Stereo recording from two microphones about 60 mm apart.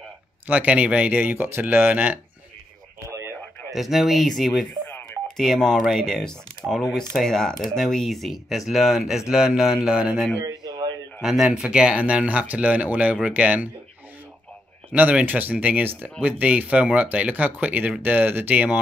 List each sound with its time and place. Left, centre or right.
0.5 s speech: right
1.2 s speech: right
3.7 s speech: centre
9.3 s mantra: centre
10.4 s a sound: right
11.1 s mantra: centre
12.0 s speech: right
14.9 s speech: right